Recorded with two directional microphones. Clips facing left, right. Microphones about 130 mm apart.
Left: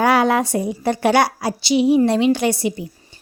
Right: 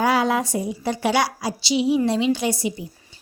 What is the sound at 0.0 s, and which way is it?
A woman's voice, 65° left (ahead or behind).